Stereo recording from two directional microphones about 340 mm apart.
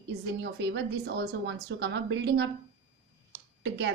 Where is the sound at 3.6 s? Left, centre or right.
Right.